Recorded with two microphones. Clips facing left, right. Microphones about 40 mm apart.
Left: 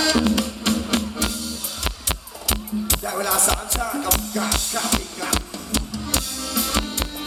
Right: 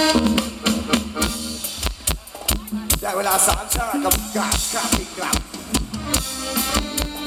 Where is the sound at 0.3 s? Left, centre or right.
Right.